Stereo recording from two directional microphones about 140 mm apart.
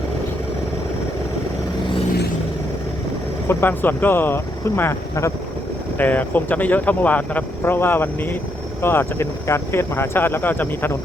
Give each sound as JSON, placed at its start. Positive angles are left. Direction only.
{"t": 3.5, "sound": "speech", "side_deg": 15}